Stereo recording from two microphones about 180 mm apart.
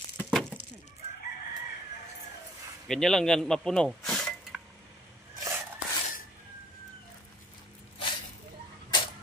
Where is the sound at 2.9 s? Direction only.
Centre (ahead or behind).